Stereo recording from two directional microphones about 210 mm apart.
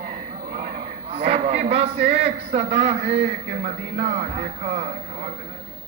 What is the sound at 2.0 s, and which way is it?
A man's voice, 30° right (ahead or behind).